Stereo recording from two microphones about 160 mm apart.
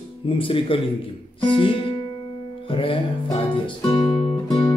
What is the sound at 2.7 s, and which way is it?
Music, 35° left (ahead or behind).